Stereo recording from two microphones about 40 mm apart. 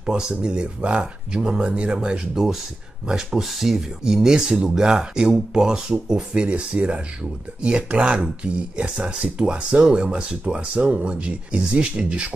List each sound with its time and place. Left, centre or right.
0.0 s speech: right
3.1 s speech: centre
3.7 s speech: centre